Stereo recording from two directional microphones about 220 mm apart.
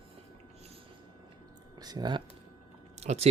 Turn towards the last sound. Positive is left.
turn(degrees=-30)  # may be behind; listen again after turning